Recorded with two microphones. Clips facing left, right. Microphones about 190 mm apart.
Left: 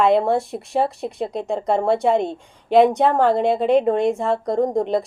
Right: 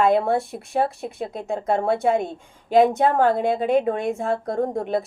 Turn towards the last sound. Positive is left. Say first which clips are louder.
# left 4 dB
turn(degrees=15)  # may be behind; listen again after turning